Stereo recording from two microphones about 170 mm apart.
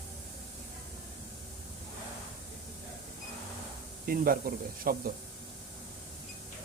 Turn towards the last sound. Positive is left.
turn(degrees=-60)  # may be behind; listen again after turning